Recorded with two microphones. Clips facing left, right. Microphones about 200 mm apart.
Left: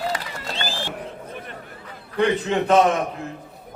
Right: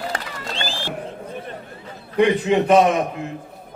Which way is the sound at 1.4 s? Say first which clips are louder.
Right 4 dB; 25° right (ahead or behind).